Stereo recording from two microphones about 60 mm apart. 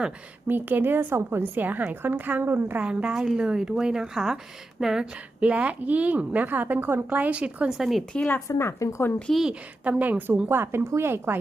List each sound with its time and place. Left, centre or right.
0.4 s a woman's voice: right
2.7 s a woman's voice: centre
5.1 s a woman's voice: right
7.2 s a woman's voice: right
7.7 s a woman's voice: centre
8.5 s a woman's voice: left
9.5 s a woman's voice: centre
10.0 s a woman's voice: right